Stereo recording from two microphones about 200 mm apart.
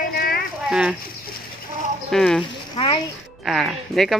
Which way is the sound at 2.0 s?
Centre (ahead or behind).